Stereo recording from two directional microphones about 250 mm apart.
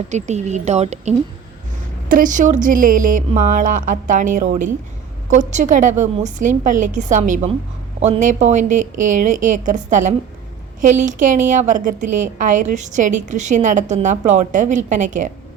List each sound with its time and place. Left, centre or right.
0.1 s a woman's voice: right